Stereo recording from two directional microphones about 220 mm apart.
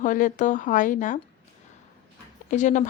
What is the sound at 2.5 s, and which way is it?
Speech, 35° left (ahead or behind).